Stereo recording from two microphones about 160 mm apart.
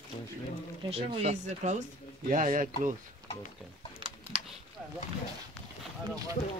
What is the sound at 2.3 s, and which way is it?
Speech, 55° right (ahead or behind).